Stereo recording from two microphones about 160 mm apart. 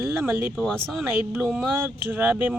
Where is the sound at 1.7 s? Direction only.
15° right (ahead or behind).